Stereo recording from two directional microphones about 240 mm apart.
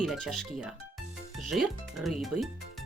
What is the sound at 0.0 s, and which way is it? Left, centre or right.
Speech, centre.